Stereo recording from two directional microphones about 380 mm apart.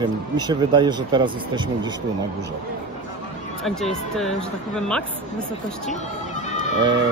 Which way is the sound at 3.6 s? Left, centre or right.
Centre.